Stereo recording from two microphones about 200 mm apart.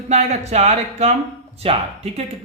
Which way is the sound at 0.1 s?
35° right (ahead or behind).